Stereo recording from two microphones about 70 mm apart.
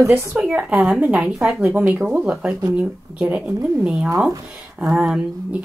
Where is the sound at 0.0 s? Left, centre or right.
Right.